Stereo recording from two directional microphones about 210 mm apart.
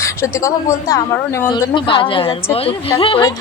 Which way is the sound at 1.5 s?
20° left (ahead or behind).